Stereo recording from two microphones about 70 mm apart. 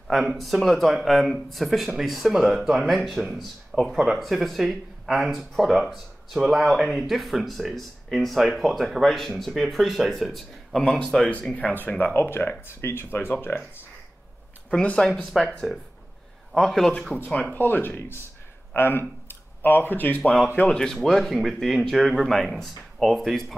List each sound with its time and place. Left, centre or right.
0.1 s speech: centre
11.5 s speech: left
14.7 s speech: centre
15.7 s speech: centre
16.5 s speech: centre
17.3 s speech: left
20.5 s speech: centre
20.8 s speech: centre